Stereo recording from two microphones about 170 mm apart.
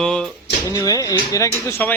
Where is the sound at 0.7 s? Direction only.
20° left (ahead or behind).